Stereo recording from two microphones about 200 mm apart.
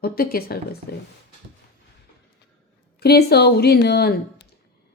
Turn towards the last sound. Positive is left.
turn(degrees=55)  # may be behind; listen again after turning